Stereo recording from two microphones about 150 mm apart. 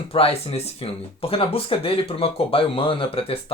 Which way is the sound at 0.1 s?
40° left (ahead or behind).